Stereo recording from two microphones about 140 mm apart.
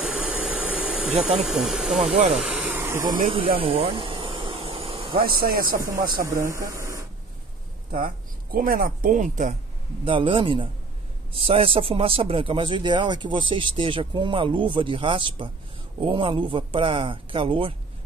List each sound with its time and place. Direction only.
0.0 s insect: 5° right (ahead or behind)
1.4 s speech: centre (ahead or behind)
2.1 s speech: 45° right (ahead or behind)
2.4 s vacuum cleaner: 10° right (ahead or behind)
3.5 s a sound: 45° right (ahead or behind)
5.2 s speech: 90° right
6.2 s speech: 20° right (ahead or behind)
7.9 s speech: 90° right; by 9.6 s 65° right (ahead or behind)
10.0 s speech: 35° right (ahead or behind)